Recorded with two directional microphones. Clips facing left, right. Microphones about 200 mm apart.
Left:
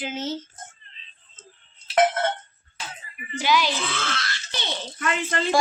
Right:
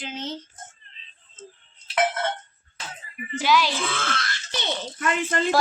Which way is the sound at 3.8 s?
50° right (ahead or behind).